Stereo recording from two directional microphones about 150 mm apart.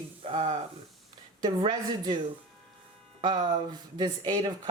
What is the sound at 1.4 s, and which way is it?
Speech, 30° right (ahead or behind).